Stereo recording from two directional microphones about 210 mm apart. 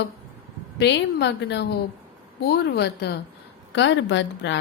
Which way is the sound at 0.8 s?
55° left (ahead or behind).